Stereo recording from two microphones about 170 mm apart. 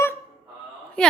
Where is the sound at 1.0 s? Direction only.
5° left (ahead or behind).